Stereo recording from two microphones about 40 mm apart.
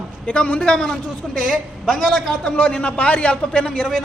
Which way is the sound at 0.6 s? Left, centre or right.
Centre.